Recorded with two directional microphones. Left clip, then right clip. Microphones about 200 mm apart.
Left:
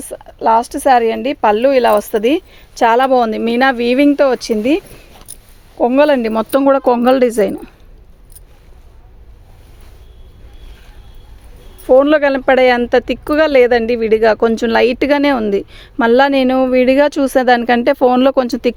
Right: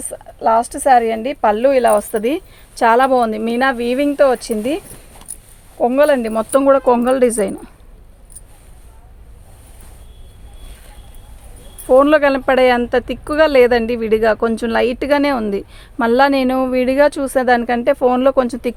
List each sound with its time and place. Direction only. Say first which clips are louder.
0.0 s speech: left 2 dB; 50° left (ahead or behind)
5.8 s speech: left 2 dB; 50° left (ahead or behind); by 7.7 s 30° left (ahead or behind)
11.9 s a woman's voice: left 1 dB; 30° left (ahead or behind)